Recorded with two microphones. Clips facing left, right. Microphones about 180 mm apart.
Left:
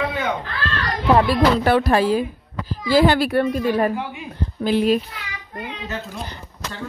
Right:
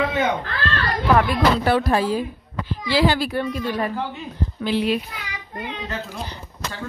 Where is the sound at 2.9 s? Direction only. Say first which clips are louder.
Left 4 dB; 50° left (ahead or behind).